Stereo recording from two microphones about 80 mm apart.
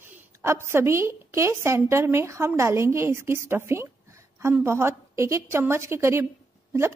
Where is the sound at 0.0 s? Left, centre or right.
Right.